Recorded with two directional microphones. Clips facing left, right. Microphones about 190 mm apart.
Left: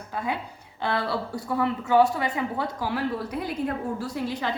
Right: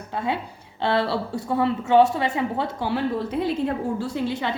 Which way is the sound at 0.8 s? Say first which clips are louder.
Right 4 dB; 25° right (ahead or behind).